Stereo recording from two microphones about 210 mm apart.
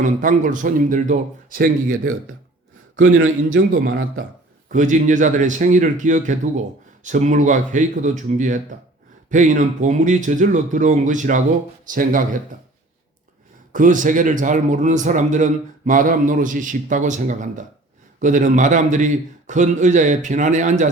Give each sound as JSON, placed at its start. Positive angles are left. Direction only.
{"t": 0.0, "sound": "a man's voice", "side_deg": -40}
{"t": 4.7, "sound": "a man's voice", "side_deg": -35}
{"t": 13.7, "sound": "a man's voice", "side_deg": -40}